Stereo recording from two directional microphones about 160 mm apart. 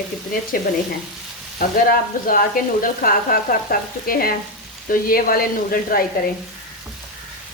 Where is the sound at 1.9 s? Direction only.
60° left (ahead or behind).